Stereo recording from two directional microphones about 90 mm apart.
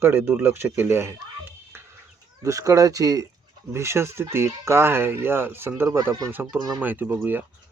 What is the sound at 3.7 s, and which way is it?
Speech, 30° right (ahead or behind).